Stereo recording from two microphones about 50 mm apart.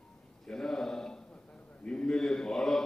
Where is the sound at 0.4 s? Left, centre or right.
Centre.